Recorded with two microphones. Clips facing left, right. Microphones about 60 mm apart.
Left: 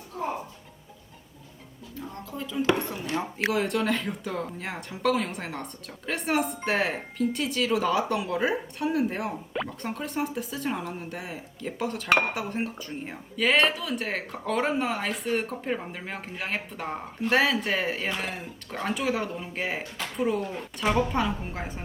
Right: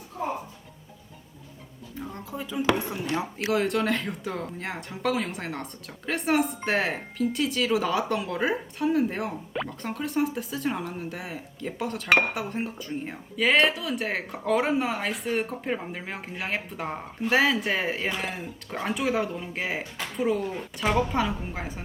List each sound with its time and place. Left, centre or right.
2.3 s speech: centre
3.5 s speech: centre